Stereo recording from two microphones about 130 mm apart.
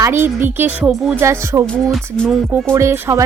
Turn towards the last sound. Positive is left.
turn(degrees=-20)  # may be behind; listen again after turning